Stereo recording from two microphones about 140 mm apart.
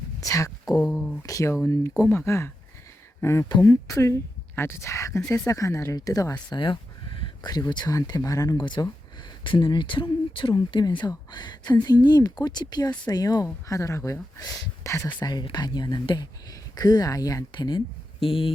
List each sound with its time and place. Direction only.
0.2 s speech: 25° left (ahead or behind)
0.8 s speech: 5° left (ahead or behind)
1.3 s speech: 25° left (ahead or behind)
6.5 s speech: 35° left (ahead or behind); by 15.2 s 20° left (ahead or behind)
15.2 s speech: 30° left (ahead or behind)